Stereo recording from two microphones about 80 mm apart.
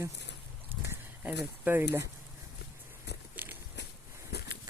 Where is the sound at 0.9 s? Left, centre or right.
Right.